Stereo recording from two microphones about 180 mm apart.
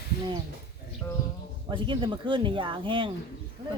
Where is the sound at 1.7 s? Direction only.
25° right (ahead or behind).